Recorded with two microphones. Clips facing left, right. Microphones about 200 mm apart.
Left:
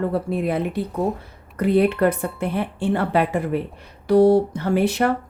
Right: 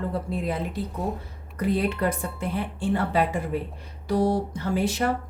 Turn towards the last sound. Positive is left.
turn(degrees=65)  # may be behind; listen again after turning